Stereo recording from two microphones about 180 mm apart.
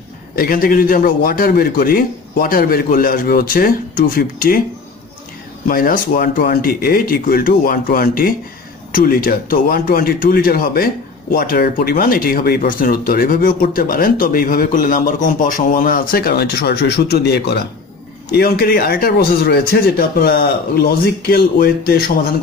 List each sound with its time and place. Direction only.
0.4 s speech: 50° left (ahead or behind)
5.7 s speech: 50° left (ahead or behind)